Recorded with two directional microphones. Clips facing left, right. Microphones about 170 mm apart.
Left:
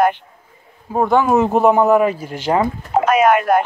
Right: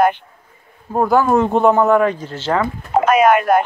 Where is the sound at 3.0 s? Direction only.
65° right (ahead or behind).